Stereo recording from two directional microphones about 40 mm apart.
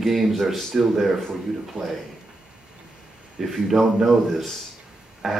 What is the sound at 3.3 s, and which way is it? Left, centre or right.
Speech, centre.